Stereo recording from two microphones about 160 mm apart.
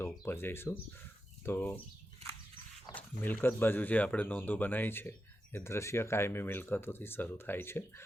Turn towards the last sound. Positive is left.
turn(degrees=15)  # may be behind; listen again after turning